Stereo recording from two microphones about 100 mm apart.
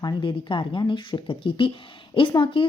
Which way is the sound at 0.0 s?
55° left (ahead or behind).